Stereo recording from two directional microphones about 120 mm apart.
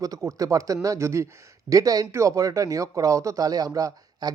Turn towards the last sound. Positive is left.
turn(degrees=-30)  # may be behind; listen again after turning